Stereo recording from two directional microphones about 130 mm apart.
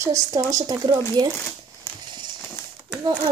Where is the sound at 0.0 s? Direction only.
20° right (ahead or behind).